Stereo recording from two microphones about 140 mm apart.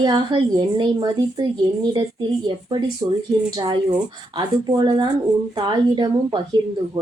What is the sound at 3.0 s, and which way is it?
Speech, 20° right (ahead or behind).